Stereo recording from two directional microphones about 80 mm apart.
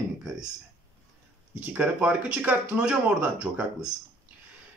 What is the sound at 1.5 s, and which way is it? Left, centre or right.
Speech, centre.